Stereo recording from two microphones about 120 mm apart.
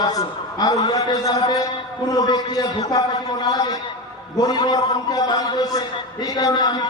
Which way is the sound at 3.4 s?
35° left (ahead or behind).